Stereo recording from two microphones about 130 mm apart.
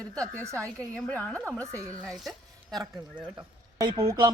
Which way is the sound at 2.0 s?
5° left (ahead or behind).